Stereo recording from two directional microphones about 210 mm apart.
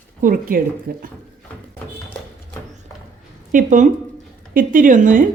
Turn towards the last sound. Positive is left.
turn(degrees=-40)  # may be behind; listen again after turning